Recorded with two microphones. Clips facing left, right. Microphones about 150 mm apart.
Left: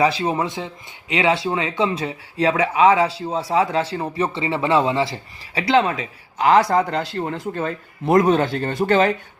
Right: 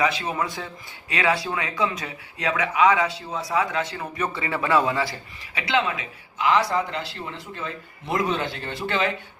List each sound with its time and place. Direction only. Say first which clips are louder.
0.0 s speech: left 5 dB; 30° left (ahead or behind)